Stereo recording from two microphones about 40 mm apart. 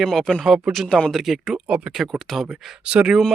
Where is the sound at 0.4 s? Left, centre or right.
Centre.